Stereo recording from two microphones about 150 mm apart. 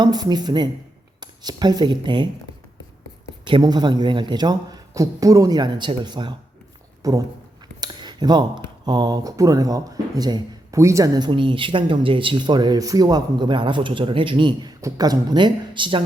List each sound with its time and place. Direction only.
0.0 s speech: 25° right (ahead or behind)
3.4 s speech: 30° right (ahead or behind)